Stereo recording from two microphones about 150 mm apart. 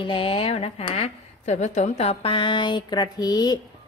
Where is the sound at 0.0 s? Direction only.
35° left (ahead or behind).